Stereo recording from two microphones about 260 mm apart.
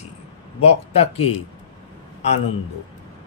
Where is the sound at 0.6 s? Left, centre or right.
Left.